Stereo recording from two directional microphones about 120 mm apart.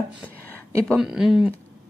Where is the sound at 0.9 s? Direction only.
5° right (ahead or behind).